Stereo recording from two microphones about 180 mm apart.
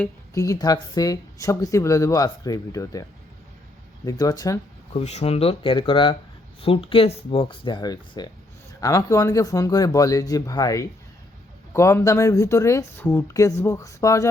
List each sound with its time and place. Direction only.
0.3 s speech: 20° left (ahead or behind)
4.9 s speech: 35° left (ahead or behind); by 14.3 s 20° left (ahead or behind)